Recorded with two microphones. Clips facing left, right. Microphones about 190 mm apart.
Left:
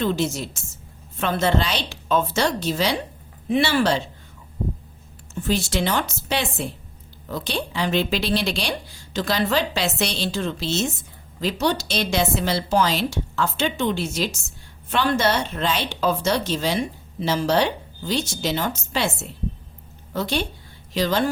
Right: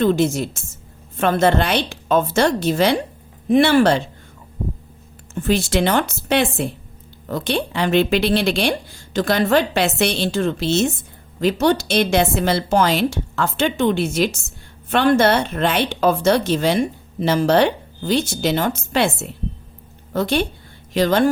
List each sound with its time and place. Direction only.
0.0 s a woman's voice: 55° right (ahead or behind)
5.3 s a woman's voice: 60° right (ahead or behind)
20.1 s a woman's voice: 55° right (ahead or behind)